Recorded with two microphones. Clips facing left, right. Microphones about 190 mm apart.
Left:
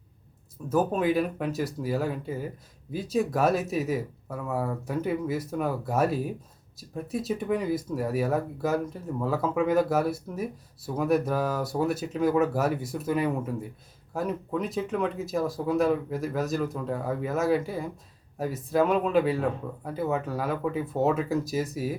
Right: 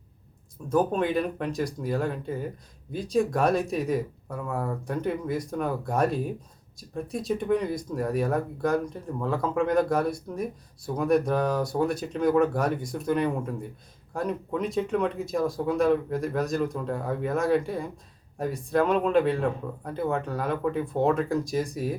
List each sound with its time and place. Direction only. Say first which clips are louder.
0.7 s speech: even; 5° left (ahead or behind)